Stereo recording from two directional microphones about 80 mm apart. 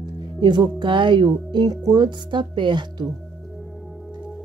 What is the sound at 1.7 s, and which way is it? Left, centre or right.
A woman's voice, right.